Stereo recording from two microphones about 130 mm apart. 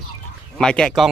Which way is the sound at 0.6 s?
5° left (ahead or behind).